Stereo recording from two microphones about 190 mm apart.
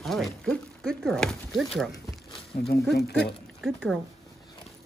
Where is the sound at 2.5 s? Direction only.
50° left (ahead or behind).